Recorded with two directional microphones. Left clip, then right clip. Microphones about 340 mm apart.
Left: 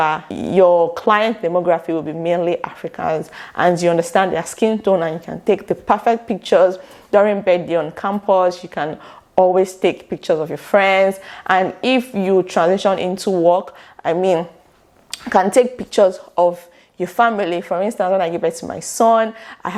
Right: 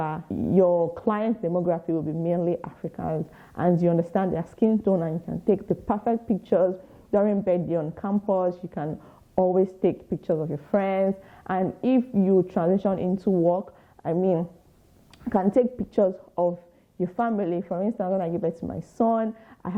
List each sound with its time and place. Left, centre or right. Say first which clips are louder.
0.0 s speech: left 11 dB; centre
0.7 s speech: left 9 dB; left
0.9 s a woman's voice: left 11 dB; centre